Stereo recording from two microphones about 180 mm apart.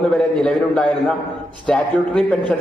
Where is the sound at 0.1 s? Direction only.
5° left (ahead or behind).